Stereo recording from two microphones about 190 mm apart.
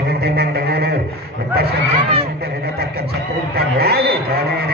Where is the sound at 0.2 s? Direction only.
55° right (ahead or behind).